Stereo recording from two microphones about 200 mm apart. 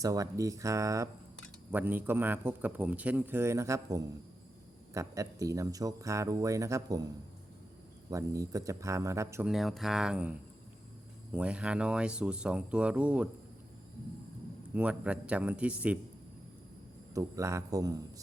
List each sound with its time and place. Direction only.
0.0 s a man's voice: 15° right (ahead or behind)
8.1 s a man's voice: 15° right (ahead or behind)
9.5 s speech: centre (ahead or behind)
11.3 s speech: 5° right (ahead or behind)
14.7 s a man's voice: 5° right (ahead or behind)
17.2 s a man's voice: 15° right (ahead or behind)